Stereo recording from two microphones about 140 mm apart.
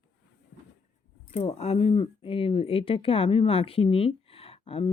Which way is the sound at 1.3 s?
50° left (ahead or behind).